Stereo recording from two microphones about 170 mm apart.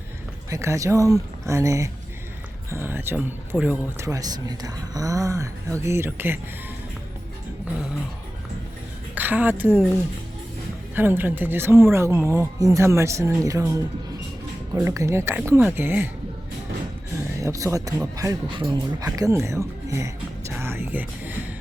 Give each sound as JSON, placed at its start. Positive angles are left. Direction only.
{"t": 0.5, "sound": "speech", "side_deg": -15}
{"t": 9.1, "sound": "speech", "side_deg": -10}
{"t": 10.9, "sound": "speech", "side_deg": -10}
{"t": 17.4, "sound": "speech", "side_deg": -20}
{"t": 20.6, "sound": "music", "side_deg": -15}